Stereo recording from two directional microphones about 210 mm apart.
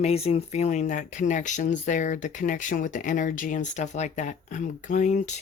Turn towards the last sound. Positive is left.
turn(degrees=35)  # may be behind; listen again after turning